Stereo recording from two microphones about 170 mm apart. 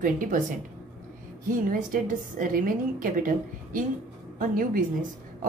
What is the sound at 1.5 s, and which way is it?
A woman's voice, 55° right (ahead or behind).